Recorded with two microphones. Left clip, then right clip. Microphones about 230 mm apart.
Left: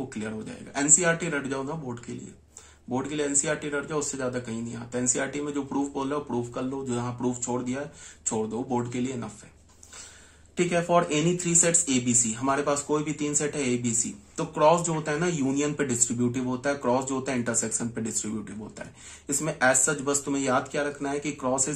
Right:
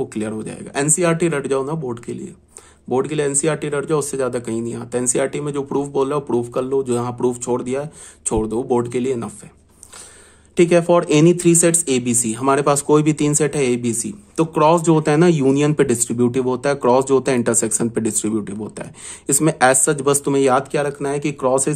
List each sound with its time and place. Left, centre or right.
0.2 s speech: right
2.9 s speech: right
10.5 s speech: right